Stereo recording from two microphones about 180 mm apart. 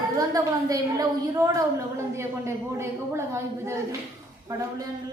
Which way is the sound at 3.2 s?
15° right (ahead or behind).